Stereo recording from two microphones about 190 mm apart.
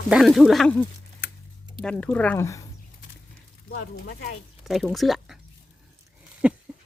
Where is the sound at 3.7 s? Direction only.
55° left (ahead or behind).